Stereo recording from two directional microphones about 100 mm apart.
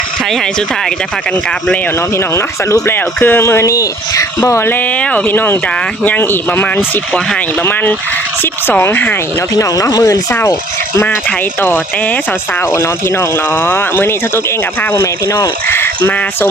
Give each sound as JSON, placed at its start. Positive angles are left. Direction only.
{"t": 2.1, "sound": "speech", "side_deg": 30}
{"t": 9.6, "sound": "speech", "side_deg": 35}
{"t": 12.7, "sound": "speech", "side_deg": 25}